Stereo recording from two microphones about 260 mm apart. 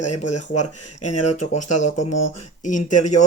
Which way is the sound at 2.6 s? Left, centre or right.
Left.